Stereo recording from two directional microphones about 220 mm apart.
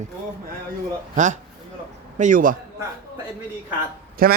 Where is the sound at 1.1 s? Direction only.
35° right (ahead or behind).